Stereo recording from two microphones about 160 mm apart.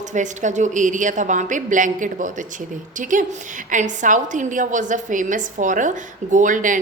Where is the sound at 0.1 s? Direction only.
50° right (ahead or behind).